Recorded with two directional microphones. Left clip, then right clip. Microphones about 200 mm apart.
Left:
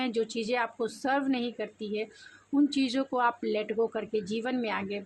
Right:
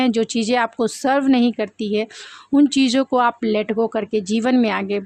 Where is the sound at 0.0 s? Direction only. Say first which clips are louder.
Right 11 dB; 45° right (ahead or behind).